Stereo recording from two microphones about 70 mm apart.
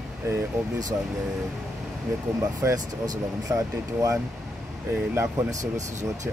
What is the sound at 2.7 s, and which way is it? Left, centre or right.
Speech, right.